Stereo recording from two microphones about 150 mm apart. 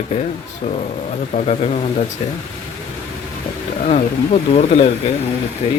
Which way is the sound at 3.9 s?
45° left (ahead or behind).